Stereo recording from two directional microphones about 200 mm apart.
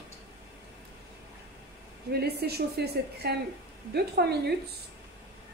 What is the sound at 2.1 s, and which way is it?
A woman's voice, 55° right (ahead or behind).